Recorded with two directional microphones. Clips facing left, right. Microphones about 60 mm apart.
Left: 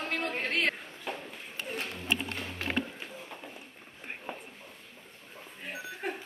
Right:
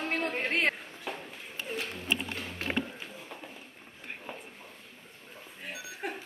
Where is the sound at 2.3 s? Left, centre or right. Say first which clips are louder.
Even; left.